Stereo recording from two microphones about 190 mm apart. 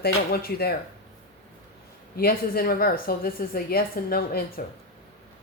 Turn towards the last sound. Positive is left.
turn(degrees=50)  # may be behind; listen again after turning